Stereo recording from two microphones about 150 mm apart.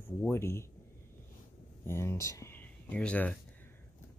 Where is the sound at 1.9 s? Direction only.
15° left (ahead or behind).